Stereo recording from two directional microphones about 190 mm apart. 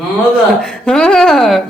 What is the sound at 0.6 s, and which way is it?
Speech, 5° left (ahead or behind).